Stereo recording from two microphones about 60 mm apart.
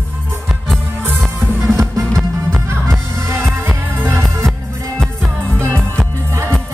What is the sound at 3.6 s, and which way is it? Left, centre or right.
Music, right.